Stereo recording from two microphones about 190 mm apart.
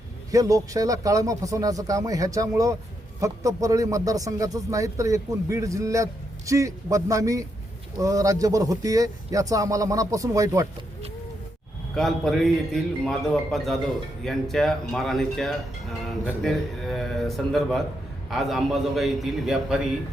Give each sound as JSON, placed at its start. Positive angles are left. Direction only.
{"t": 0.3, "sound": "a man's voice", "side_deg": -20}
{"t": 11.9, "sound": "speech", "side_deg": 0}